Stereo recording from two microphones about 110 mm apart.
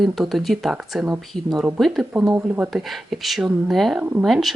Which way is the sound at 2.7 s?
Centre (ahead or behind).